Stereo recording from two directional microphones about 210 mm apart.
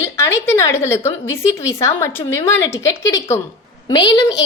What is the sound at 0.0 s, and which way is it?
A woman's voice, 15° left (ahead or behind).